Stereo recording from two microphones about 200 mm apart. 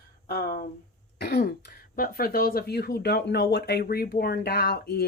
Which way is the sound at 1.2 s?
55° left (ahead or behind).